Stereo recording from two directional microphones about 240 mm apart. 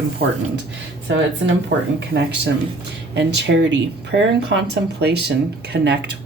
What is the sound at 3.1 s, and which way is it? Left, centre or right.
Speech, right.